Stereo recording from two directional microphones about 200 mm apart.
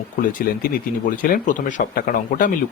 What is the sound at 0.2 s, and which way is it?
Speech, 45° left (ahead or behind).